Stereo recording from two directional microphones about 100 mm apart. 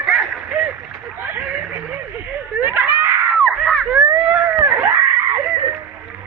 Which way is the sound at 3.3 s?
Centre (ahead or behind).